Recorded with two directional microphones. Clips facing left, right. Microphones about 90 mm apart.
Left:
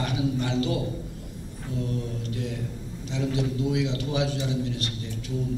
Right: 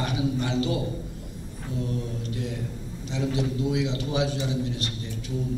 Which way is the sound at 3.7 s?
20° right (ahead or behind).